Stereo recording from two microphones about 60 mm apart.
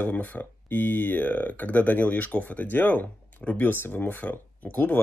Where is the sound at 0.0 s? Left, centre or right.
Left.